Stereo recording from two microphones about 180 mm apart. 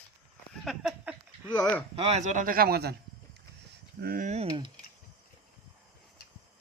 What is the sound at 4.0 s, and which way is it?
Speech, 55° right (ahead or behind).